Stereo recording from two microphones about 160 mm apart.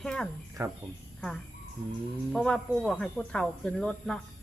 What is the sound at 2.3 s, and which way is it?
A woman's voice, 5° left (ahead or behind).